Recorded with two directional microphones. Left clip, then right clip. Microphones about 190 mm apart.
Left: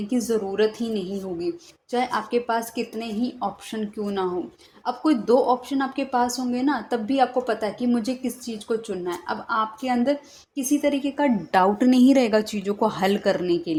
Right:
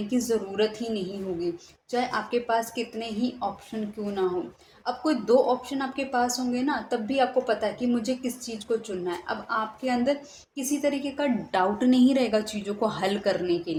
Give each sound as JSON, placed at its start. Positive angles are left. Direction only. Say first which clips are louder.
{"t": 0.1, "sound": "a woman's voice", "louder": "left 3 dB", "side_deg": 30}